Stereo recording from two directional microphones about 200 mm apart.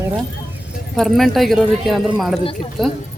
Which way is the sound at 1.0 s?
Centre (ahead or behind).